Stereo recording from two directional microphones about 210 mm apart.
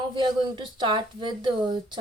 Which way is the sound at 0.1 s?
20° right (ahead or behind).